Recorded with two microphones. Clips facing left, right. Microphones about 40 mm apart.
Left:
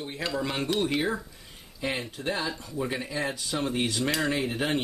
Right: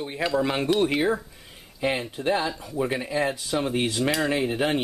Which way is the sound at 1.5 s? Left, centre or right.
Centre.